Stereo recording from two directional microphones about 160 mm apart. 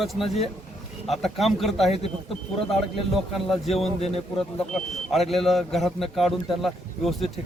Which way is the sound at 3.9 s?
40° left (ahead or behind).